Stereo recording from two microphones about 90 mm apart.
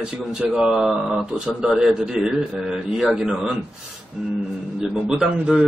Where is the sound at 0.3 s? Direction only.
5° right (ahead or behind).